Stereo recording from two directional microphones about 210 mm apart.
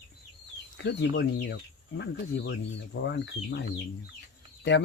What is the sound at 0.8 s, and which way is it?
Speech, 55° left (ahead or behind).